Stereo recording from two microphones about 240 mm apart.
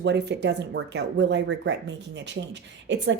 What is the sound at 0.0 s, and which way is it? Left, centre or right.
Speech, right.